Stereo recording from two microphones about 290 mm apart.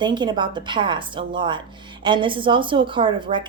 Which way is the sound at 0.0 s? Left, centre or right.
Centre.